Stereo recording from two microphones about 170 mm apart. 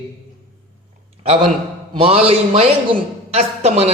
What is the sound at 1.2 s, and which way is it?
A man's voice, 35° right (ahead or behind).